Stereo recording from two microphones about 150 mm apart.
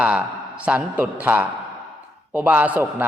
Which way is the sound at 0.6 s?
10° right (ahead or behind).